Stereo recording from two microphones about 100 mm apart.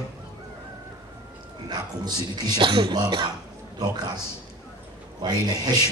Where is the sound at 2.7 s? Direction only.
55° right (ahead or behind).